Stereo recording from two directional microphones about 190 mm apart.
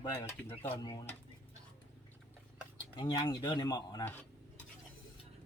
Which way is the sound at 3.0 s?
25° left (ahead or behind).